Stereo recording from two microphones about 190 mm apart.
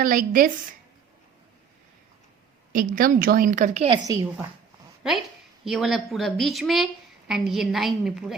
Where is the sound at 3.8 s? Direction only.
20° right (ahead or behind).